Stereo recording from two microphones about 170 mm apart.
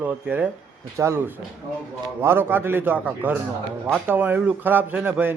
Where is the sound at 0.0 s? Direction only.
10° right (ahead or behind).